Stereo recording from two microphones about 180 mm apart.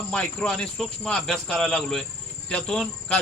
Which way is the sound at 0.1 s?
5° left (ahead or behind).